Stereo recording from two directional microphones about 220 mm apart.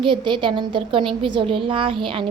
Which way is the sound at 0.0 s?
20° right (ahead or behind).